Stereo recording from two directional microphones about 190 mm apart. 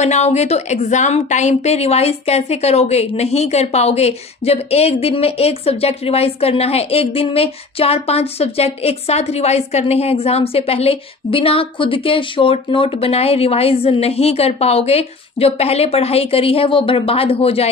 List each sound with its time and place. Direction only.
0.0 s a woman's voice: 35° left (ahead or behind)